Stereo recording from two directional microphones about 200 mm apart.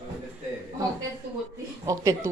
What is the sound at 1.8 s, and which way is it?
Speech, 15° right (ahead or behind).